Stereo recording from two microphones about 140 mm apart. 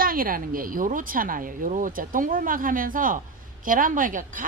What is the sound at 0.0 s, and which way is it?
A woman's voice, 90° right.